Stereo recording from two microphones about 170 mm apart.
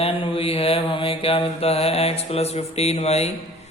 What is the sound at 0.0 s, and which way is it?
Mantra, 30° left (ahead or behind).